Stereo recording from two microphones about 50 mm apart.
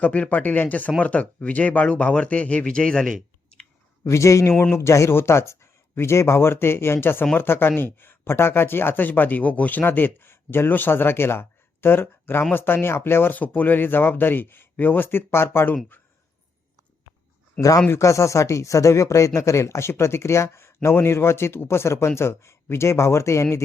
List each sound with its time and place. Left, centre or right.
0.0 s speech: left
4.0 s speech: left
4.7 s speech: left
5.1 s speech: left
13.3 s speech: left
18.0 s speech: left